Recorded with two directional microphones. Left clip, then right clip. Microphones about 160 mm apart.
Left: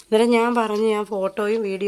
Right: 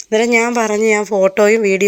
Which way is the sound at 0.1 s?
10° right (ahead or behind).